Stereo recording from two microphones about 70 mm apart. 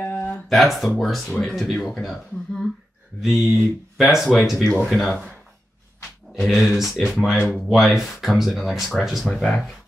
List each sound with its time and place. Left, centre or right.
0.0 s a sound: left
0.5 s speech: centre
6.3 s speech: centre
7.0 s speech: centre
7.7 s speech: centre
9.3 s speech: centre